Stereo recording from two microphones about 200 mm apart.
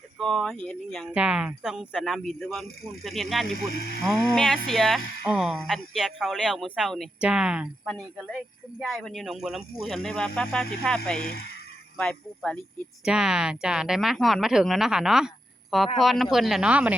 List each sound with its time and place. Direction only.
0.2 s speech: centre (ahead or behind)
3.7 s speech: 50° left (ahead or behind)
4.4 s speech: centre (ahead or behind)
11.2 s speech: 50° left (ahead or behind)
11.9 s speech: 5° left (ahead or behind)